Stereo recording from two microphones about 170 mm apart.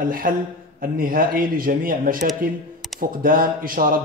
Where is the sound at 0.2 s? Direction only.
55° right (ahead or behind).